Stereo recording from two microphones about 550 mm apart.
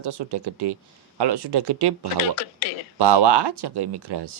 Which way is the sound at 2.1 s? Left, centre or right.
Left.